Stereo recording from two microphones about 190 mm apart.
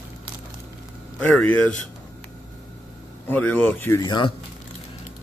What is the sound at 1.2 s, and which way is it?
Speech, 10° left (ahead or behind).